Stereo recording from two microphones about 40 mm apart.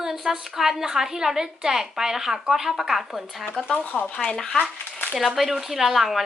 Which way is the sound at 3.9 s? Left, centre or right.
Left.